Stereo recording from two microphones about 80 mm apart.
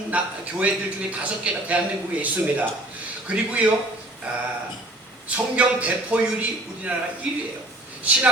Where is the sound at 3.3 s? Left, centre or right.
Centre.